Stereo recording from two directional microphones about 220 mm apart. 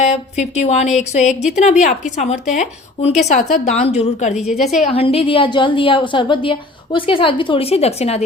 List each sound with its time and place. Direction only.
0.0 s a woman's voice: 30° left (ahead or behind)
4.4 s a woman's voice: centre (ahead or behind)
4.8 s a woman's voice: 25° left (ahead or behind)